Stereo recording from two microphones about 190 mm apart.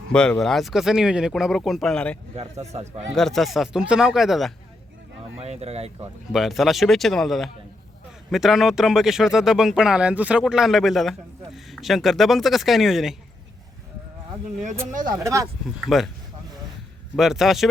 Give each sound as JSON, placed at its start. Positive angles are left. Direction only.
{"t": 0.1, "sound": "speech", "side_deg": 5}
{"t": 2.3, "sound": "speech", "side_deg": -35}
{"t": 3.2, "sound": "speech", "side_deg": 0}
{"t": 5.4, "sound": "speech", "side_deg": -35}
{"t": 6.3, "sound": "speech", "side_deg": 0}
{"t": 14.8, "sound": "speech", "side_deg": -45}
{"t": 15.1, "sound": "speech", "side_deg": -15}
{"t": 15.9, "sound": "speech", "side_deg": 0}
{"t": 17.2, "sound": "speech", "side_deg": 0}